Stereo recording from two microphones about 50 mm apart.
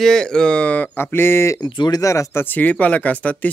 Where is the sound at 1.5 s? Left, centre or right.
Left.